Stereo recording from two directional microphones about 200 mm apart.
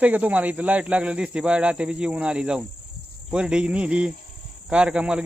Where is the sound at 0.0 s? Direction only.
5° right (ahead or behind).